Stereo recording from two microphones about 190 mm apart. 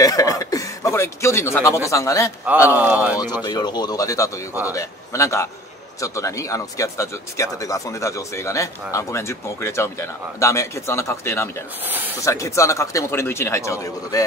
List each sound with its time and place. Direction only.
0.0 s a sound: 20° left (ahead or behind)
1.9 s speech: 15° left (ahead or behind)
2.7 s speech: 10° right (ahead or behind)
3.4 s speech: 20° left (ahead or behind)
11.8 s speech: 10° right (ahead or behind)
12.2 s speech: 15° left (ahead or behind)